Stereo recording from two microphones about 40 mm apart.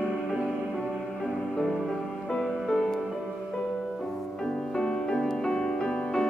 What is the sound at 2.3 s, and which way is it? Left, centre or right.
Music, centre.